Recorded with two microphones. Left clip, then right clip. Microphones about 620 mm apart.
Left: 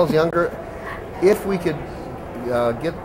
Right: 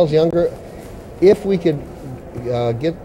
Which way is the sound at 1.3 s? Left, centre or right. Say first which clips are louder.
Right 5 dB; right.